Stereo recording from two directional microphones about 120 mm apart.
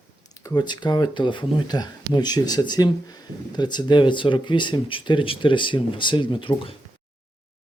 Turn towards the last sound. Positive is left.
turn(degrees=45)  # may be behind; listen again after turning